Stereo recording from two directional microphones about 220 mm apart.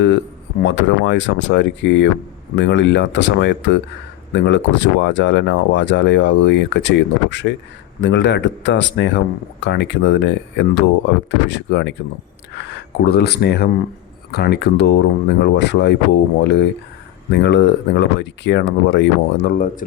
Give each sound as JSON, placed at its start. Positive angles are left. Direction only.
{"t": 0.6, "sound": "speech", "side_deg": 55}
{"t": 17.3, "sound": "speech", "side_deg": 50}